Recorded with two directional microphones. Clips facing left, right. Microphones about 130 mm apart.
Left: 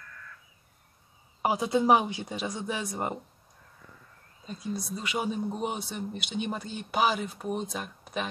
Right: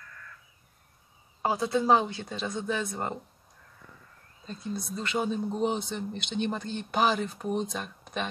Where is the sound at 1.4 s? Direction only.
15° left (ahead or behind).